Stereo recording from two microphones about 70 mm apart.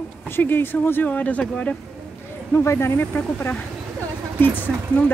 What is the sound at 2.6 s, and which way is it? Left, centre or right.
Speech, left.